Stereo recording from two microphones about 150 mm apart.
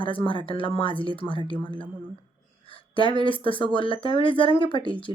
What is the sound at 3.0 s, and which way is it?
Speech, 35° left (ahead or behind).